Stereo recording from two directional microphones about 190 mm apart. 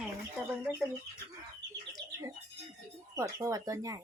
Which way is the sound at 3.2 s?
15° right (ahead or behind).